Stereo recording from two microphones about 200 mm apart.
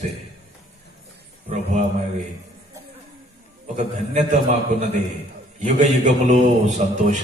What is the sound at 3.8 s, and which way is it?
A man's voice, 35° right (ahead or behind).